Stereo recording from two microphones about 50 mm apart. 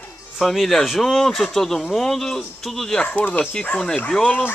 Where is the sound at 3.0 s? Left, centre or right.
Left.